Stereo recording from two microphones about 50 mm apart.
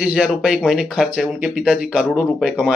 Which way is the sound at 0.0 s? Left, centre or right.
Centre.